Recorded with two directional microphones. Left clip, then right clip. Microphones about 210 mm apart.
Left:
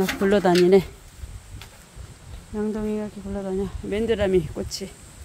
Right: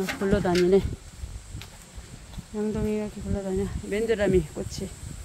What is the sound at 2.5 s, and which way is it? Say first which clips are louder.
Speech: left 1 dB; 10° left (ahead or behind).